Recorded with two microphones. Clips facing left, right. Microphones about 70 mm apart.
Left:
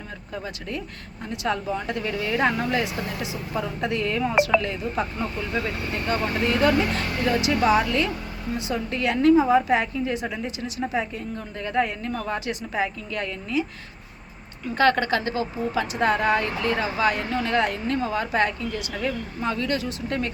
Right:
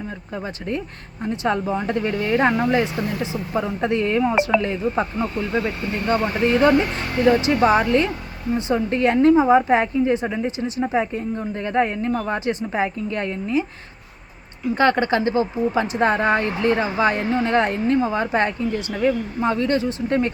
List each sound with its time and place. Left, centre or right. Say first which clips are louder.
0.3 s speech: right 5 dB; right
12.5 s speech: right 4 dB; right
14.8 s speech: right 2 dB; right